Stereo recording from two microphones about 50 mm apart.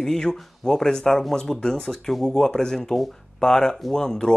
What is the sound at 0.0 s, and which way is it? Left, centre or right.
Speech, centre.